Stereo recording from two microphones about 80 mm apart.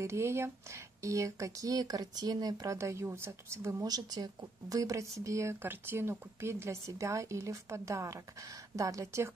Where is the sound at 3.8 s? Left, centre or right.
Right.